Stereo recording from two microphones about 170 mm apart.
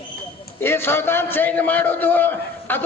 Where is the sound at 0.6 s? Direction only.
15° left (ahead or behind).